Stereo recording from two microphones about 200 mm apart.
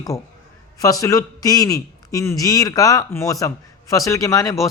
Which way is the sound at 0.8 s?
15° left (ahead or behind).